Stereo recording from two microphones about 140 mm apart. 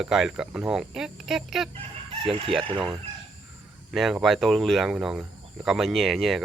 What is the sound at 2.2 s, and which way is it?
Speech, 40° right (ahead or behind).